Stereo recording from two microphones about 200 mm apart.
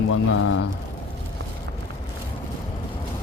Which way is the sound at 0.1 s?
85° left.